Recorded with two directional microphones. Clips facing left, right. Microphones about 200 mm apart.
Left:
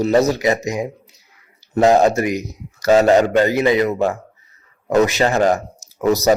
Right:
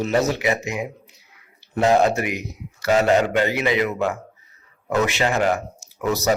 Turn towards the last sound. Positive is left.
turn(degrees=40)  # may be behind; listen again after turning